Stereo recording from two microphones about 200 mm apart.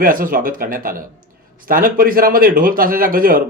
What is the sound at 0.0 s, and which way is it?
A man's voice, 45° right (ahead or behind).